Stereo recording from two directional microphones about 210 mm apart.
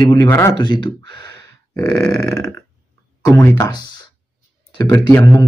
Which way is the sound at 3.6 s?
20° left (ahead or behind).